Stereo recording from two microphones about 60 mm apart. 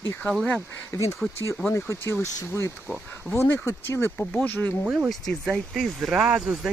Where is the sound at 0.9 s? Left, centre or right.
Left.